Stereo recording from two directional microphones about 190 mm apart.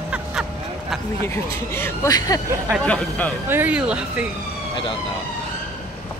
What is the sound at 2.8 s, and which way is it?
Speech, 5° left (ahead or behind).